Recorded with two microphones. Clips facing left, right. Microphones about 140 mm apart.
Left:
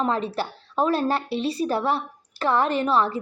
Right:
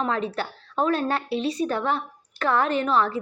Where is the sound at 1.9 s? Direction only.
35° left (ahead or behind).